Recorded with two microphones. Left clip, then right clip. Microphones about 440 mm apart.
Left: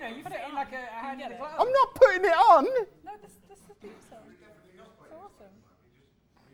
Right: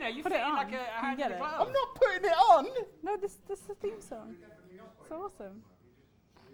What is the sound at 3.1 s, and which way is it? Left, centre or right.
Speech, right.